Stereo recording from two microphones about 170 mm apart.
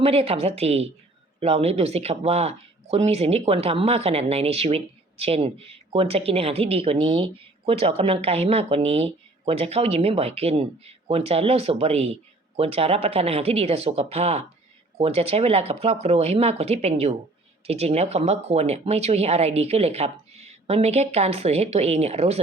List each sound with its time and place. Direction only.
0.0 s speech: 35° right (ahead or behind)